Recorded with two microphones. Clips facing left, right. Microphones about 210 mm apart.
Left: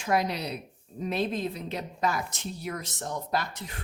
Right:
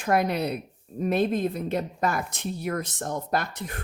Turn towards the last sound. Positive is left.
turn(degrees=-55)  # may be behind; listen again after turning